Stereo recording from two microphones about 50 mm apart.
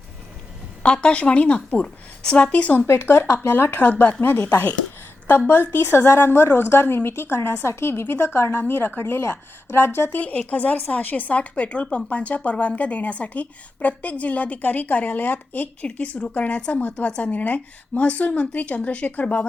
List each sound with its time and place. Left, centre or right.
1.0 s a woman's voice: left
2.8 s a woman's voice: left
5.5 s a woman's voice: left
10.2 s a woman's voice: left